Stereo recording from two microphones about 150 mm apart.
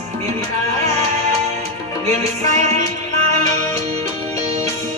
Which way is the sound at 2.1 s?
50° right (ahead or behind).